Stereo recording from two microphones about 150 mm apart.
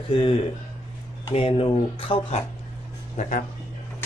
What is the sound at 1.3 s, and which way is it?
Speech, 35° left (ahead or behind).